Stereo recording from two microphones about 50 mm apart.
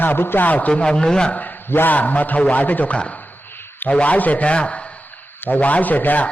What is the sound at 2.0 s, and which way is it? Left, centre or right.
A man's voice, left.